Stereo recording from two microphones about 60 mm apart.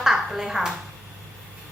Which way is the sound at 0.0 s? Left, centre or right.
Centre.